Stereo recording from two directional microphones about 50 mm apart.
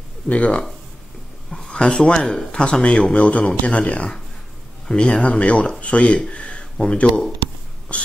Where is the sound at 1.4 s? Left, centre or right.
Centre.